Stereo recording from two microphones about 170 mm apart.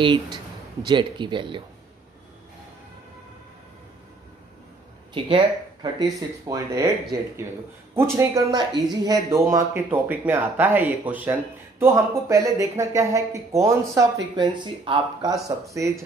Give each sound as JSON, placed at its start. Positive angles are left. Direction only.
{"t": 0.0, "sound": "speech", "side_deg": -30}
{"t": 5.1, "sound": "speech", "side_deg": -30}